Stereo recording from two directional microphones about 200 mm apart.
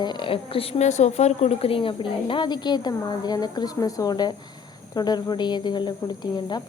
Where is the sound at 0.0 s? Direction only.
20° left (ahead or behind).